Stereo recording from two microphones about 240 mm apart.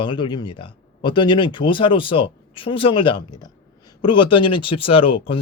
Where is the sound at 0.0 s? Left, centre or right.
Centre.